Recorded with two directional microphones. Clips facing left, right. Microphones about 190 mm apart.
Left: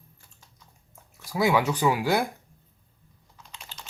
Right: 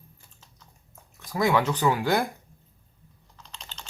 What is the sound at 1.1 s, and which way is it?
Speech, 5° left (ahead or behind).